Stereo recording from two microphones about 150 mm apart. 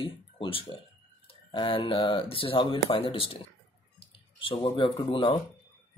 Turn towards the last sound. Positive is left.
turn(degrees=30)  # may be behind; listen again after turning